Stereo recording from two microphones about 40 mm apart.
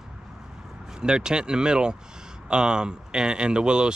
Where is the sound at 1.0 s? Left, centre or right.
Right.